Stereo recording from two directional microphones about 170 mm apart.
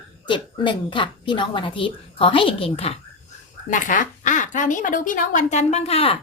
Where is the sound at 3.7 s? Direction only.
50° left (ahead or behind).